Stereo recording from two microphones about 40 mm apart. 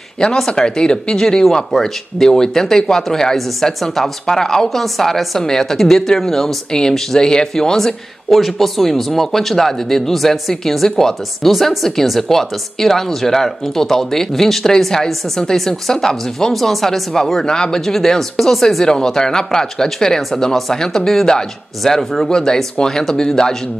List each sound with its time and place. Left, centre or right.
0.5 s speech: left